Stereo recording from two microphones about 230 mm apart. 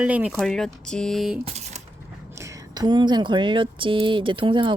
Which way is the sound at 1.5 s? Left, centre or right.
Right.